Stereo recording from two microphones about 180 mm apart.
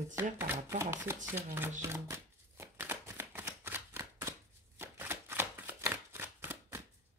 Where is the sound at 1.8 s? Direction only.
15° right (ahead or behind).